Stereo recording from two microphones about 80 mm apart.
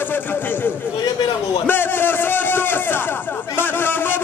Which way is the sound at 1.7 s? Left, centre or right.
Left.